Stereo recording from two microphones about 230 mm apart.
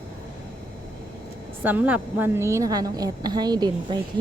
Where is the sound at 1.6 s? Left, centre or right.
Centre.